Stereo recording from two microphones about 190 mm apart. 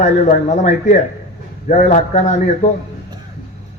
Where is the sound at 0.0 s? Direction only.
40° left (ahead or behind).